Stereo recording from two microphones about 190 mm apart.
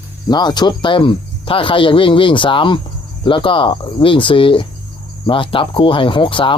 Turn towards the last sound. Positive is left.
turn(degrees=25)  # may be behind; listen again after turning